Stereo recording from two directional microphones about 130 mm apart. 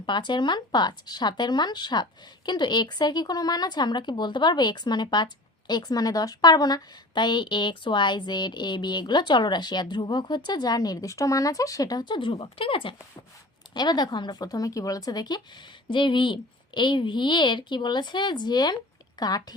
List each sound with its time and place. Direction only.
0.0 s speech: 35° left (ahead or behind)